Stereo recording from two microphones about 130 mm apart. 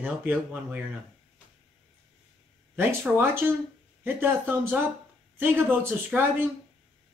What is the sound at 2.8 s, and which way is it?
Speech, 15° right (ahead or behind).